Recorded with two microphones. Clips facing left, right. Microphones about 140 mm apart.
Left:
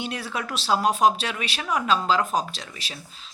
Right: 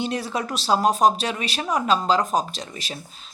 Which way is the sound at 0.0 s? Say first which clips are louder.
Right 4 dB; 40° right (ahead or behind).